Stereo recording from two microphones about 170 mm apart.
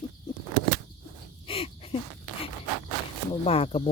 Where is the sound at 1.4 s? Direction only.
35° left (ahead or behind).